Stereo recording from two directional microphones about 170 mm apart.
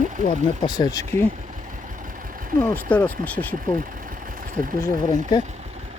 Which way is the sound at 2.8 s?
10° left (ahead or behind).